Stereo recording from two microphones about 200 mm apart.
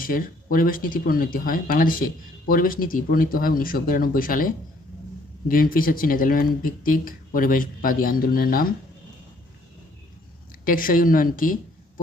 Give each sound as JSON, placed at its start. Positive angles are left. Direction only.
{"t": 0.0, "sound": "speech", "side_deg": 45}
{"t": 5.5, "sound": "speech", "side_deg": 45}
{"t": 10.7, "sound": "speech", "side_deg": 45}